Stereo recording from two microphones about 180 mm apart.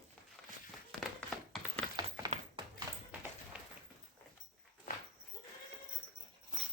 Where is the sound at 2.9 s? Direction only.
15° right (ahead or behind).